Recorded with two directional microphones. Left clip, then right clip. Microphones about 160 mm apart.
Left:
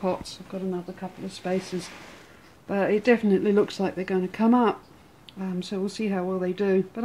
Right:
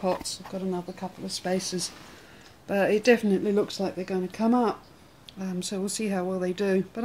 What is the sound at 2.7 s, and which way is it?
Speech, 5° right (ahead or behind).